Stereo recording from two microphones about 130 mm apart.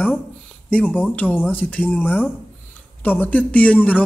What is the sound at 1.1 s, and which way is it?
Speech, 15° left (ahead or behind).